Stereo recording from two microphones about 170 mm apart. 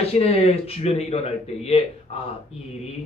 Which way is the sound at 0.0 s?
35° left (ahead or behind).